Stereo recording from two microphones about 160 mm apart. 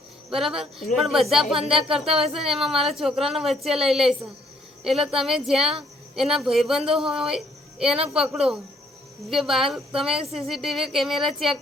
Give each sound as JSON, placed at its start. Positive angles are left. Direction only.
{"t": 0.3, "sound": "speech", "side_deg": 0}
{"t": 6.8, "sound": "speech", "side_deg": -35}
{"t": 7.1, "sound": "speech", "side_deg": -5}